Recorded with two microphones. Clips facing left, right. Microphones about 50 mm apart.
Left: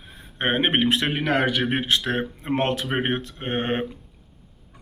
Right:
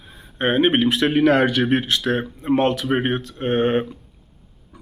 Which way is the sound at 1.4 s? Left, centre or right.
Centre.